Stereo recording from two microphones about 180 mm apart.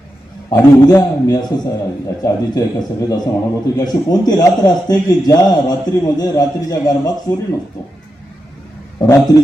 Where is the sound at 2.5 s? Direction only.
20° left (ahead or behind).